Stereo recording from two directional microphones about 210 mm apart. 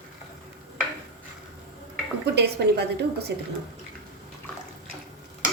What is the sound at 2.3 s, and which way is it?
Speech, 50° right (ahead or behind).